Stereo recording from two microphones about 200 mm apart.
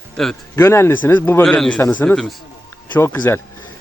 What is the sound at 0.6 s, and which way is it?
Speech, 15° left (ahead or behind).